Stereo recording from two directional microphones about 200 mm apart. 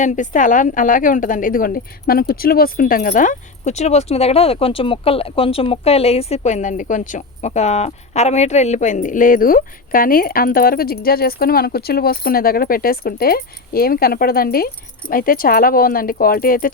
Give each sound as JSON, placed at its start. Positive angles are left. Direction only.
{"t": 0.0, "sound": "a woman's voice", "side_deg": 40}